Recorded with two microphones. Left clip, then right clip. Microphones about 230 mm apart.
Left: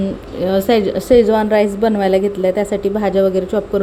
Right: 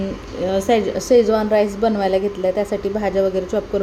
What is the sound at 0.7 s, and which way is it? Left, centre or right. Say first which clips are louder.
A woman's voice: left 2 dB; centre.